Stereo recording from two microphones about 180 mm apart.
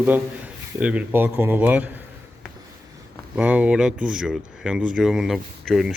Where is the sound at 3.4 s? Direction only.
5° right (ahead or behind).